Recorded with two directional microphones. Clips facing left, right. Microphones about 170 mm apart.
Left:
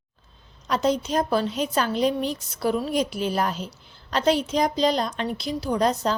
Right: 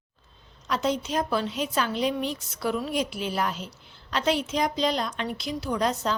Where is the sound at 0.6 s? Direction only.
40° left (ahead or behind).